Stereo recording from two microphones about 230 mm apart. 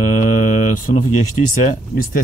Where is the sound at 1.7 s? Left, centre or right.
Left.